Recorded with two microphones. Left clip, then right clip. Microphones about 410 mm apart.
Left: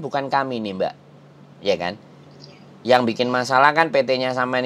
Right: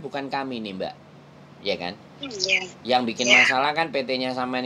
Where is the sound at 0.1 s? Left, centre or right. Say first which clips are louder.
Left 8 dB; left.